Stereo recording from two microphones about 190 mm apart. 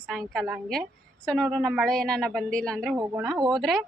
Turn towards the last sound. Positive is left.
turn(degrees=0)  # may be behind; listen again after turning